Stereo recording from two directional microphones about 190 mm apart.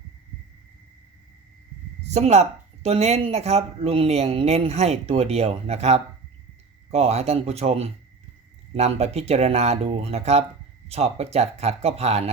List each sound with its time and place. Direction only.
2.0 s speech: 35° right (ahead or behind)